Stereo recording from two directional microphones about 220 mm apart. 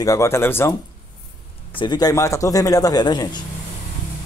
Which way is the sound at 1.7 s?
20° left (ahead or behind).